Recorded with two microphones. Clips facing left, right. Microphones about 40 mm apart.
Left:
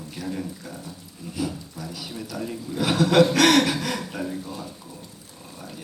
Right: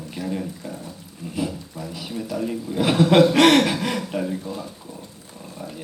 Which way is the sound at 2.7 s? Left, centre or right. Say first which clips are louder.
Right 3 dB; right.